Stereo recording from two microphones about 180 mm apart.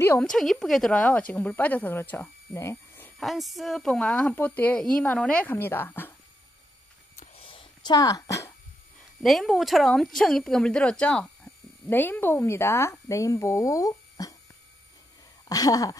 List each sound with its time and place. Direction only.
0.0 s a woman's voice: 15° left (ahead or behind)
0.3 s speech: centre (ahead or behind)
3.2 s speech: centre (ahead or behind)
7.2 s a sound: 30° left (ahead or behind)
9.2 s speech: centre (ahead or behind); by 14.3 s 20° left (ahead or behind)
15.4 s a sound: 20° left (ahead or behind)